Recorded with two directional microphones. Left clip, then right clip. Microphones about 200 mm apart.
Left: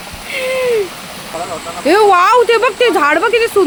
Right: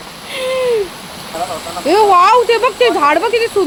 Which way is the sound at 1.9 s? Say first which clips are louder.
Even; 30° left (ahead or behind).